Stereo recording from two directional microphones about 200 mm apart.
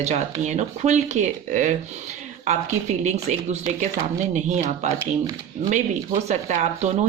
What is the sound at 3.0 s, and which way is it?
Speech, 35° right (ahead or behind).